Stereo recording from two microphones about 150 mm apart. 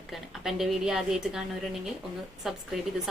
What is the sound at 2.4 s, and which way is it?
Speech, centre (ahead or behind).